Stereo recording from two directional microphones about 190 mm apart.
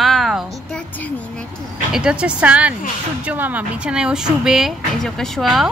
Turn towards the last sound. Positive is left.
turn(degrees=0)  # may be behind; listen again after turning